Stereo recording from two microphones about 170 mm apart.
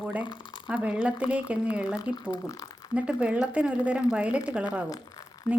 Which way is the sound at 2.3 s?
20° left (ahead or behind).